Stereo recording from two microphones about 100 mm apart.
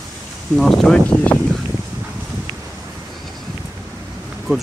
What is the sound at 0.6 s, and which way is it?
Speech, 5° left (ahead or behind).